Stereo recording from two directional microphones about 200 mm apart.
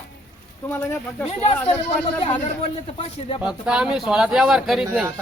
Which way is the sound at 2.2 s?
30° left (ahead or behind).